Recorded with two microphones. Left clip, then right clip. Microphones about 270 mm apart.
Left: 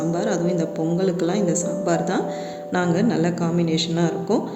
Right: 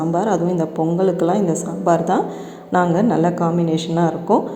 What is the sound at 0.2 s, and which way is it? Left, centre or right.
A woman's voice, centre.